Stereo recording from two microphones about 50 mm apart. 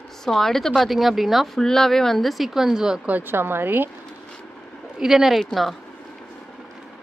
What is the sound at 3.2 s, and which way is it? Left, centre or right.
Speech, right.